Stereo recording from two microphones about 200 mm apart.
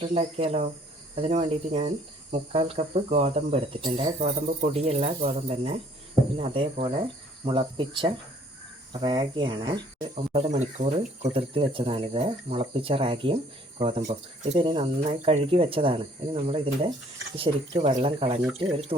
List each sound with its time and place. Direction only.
0.0 s speech: 30° right (ahead or behind)